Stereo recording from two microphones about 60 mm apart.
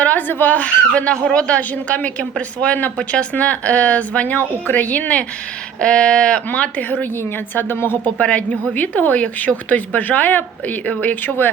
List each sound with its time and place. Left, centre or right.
0.0 s a woman's voice: left
8.2 s speech: left